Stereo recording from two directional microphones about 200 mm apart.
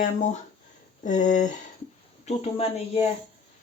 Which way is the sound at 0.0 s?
40° left (ahead or behind).